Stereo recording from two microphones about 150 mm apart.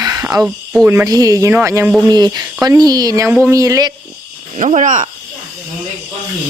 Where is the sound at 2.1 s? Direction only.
25° right (ahead or behind).